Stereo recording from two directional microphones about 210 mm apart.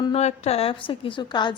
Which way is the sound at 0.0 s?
30° left (ahead or behind).